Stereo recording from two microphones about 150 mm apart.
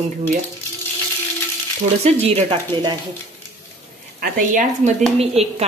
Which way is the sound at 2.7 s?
35° right (ahead or behind).